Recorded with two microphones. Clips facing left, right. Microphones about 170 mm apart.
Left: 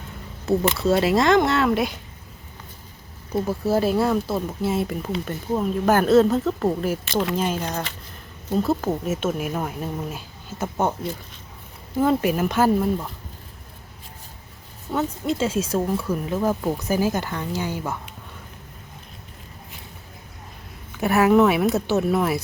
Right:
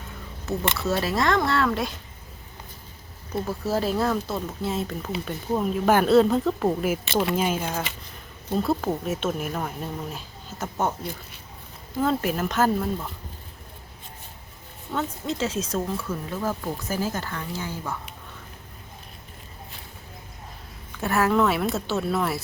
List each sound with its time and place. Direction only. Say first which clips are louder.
0.4 s speech: left 6 dB; 25° left (ahead or behind)
3.7 s speech: left 4 dB; 5° left (ahead or behind)
11.9 s speech: left 4 dB; 10° left (ahead or behind)
14.9 s speech: left 4 dB; 10° left (ahead or behind)
21.0 s speech: left 5 dB; 15° left (ahead or behind)